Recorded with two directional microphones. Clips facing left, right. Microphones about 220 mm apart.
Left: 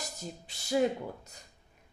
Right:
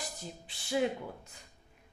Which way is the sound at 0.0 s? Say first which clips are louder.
Left 2 dB; 40° left (ahead or behind).